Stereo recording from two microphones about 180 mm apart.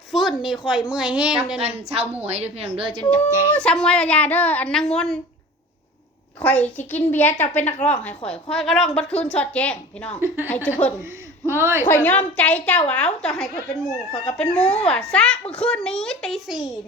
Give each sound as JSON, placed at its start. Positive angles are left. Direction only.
{"t": 0.1, "sound": "speech", "side_deg": 0}
{"t": 2.2, "sound": "a woman's voice", "side_deg": -35}
{"t": 3.5, "sound": "speech", "side_deg": 5}
{"t": 6.4, "sound": "a woman's voice", "side_deg": 10}
{"t": 10.2, "sound": "speech", "side_deg": -10}
{"t": 10.7, "sound": "a woman's voice", "side_deg": 10}
{"t": 11.4, "sound": "speech", "side_deg": -15}
{"t": 11.9, "sound": "a woman's voice", "side_deg": 10}